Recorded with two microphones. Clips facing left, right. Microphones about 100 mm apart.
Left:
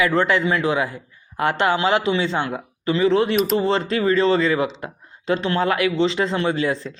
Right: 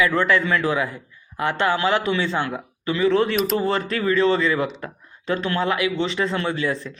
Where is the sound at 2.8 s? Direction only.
35° left (ahead or behind).